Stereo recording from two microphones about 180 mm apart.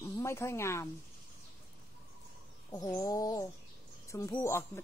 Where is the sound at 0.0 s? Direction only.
15° left (ahead or behind).